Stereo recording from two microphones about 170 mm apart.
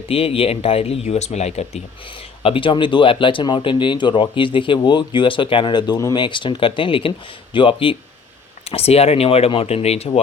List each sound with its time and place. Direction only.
0.1 s speech: 35° left (ahead or behind)